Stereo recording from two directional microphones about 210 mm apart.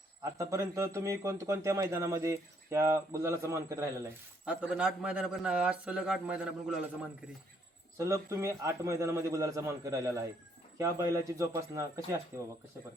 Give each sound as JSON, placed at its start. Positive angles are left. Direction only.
{"t": 0.3, "sound": "a man's voice", "side_deg": -15}
{"t": 7.9, "sound": "speech", "side_deg": -15}